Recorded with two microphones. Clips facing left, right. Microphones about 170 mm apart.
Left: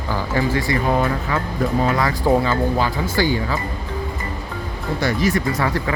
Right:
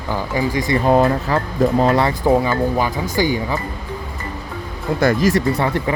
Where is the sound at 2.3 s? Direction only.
15° right (ahead or behind).